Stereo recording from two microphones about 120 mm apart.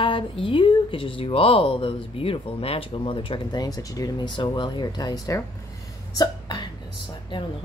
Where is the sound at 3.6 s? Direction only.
30° left (ahead or behind).